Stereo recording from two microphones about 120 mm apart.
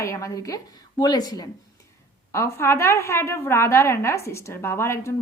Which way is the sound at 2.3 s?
25° left (ahead or behind).